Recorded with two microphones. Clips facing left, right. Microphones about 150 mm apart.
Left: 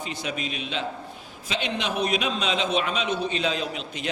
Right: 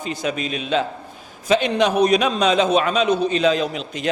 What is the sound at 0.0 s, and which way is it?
A man's voice, 45° right (ahead or behind).